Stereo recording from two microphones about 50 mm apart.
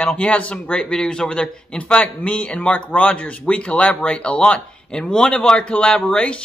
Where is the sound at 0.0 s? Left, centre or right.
Left.